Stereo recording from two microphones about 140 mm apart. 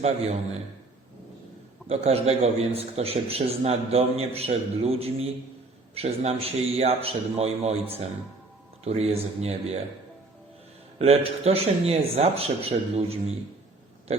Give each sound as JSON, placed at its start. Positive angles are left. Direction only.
{"t": 0.0, "sound": "a man's voice", "side_deg": -50}
{"t": 1.9, "sound": "a man's voice", "side_deg": -45}
{"t": 10.9, "sound": "a man's voice", "side_deg": -45}